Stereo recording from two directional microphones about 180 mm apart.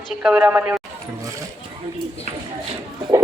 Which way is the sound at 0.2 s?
10° right (ahead or behind).